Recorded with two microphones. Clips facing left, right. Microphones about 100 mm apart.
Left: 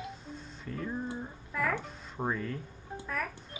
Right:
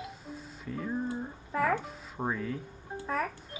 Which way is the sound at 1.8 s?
5° right (ahead or behind).